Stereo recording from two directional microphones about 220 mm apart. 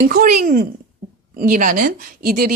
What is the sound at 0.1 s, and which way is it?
Speech, 40° right (ahead or behind).